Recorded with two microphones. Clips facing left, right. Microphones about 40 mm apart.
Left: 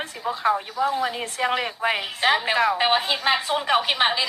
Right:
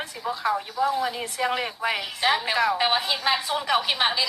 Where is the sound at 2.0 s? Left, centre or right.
Left.